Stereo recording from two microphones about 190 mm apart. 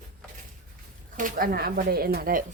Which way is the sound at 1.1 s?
45° right (ahead or behind).